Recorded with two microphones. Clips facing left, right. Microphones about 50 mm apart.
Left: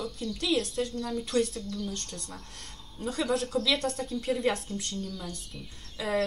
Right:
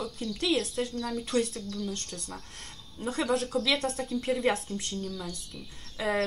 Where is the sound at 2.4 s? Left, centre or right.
Right.